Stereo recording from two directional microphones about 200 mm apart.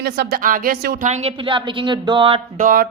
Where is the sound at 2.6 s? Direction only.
40° right (ahead or behind).